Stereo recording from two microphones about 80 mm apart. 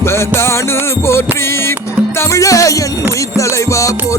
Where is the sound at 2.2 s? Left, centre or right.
Left.